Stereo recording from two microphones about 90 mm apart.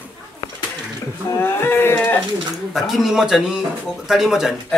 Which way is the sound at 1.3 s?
25° left (ahead or behind).